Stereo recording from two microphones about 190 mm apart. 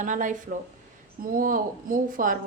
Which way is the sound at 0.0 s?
40° right (ahead or behind).